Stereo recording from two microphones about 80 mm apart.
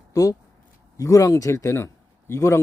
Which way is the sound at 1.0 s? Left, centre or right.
Left.